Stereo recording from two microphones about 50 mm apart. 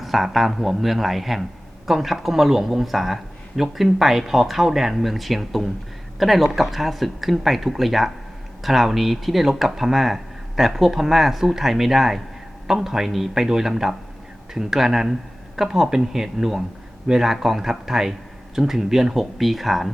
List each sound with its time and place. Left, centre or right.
0.0 s speech: centre